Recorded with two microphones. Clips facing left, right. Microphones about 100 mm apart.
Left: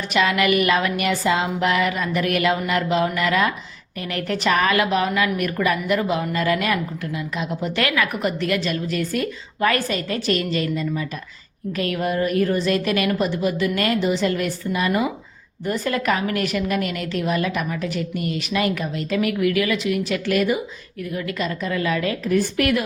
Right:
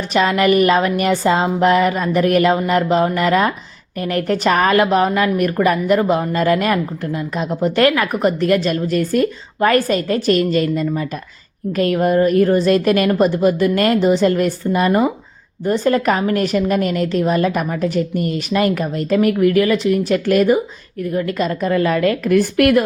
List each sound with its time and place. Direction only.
0.1 s a woman's voice: 35° right (ahead or behind); by 22.8 s 55° right (ahead or behind)